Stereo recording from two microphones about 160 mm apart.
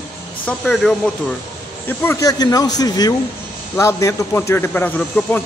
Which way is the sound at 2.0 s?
15° left (ahead or behind).